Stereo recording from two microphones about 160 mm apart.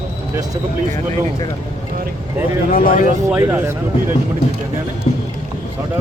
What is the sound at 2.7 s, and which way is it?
Speech, 65° left (ahead or behind).